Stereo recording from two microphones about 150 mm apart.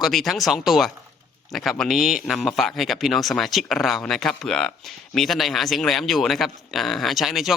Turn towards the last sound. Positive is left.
turn(degrees=0)  # may be behind; listen again after turning